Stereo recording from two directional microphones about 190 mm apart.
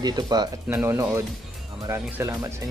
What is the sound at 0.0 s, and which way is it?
Speech, 20° right (ahead or behind).